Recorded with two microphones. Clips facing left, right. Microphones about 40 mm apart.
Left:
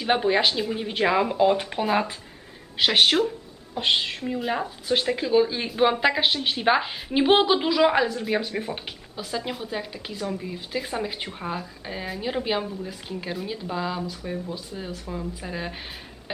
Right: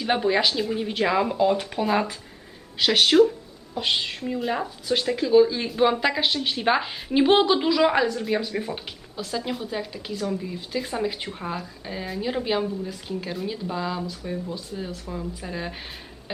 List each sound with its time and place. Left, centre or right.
0.0 s speech: centre
1.8 s speech: centre
2.7 s speech: centre